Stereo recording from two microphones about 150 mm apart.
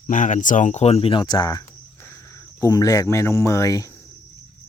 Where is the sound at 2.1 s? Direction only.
20° left (ahead or behind).